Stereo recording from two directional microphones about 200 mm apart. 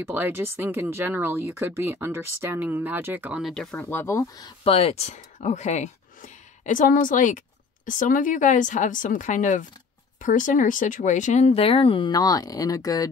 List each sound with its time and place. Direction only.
0.0 s speech: 10° right (ahead or behind); by 4.5 s 15° left (ahead or behind)
4.6 s speech: 30° left (ahead or behind)